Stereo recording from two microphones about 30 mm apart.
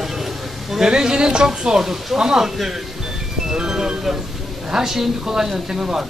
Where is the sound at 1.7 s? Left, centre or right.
Centre.